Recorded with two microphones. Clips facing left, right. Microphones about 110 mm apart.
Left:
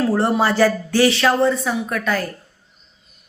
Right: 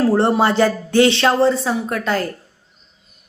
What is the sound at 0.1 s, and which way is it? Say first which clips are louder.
Speech: right 2 dB; 25° right (ahead or behind).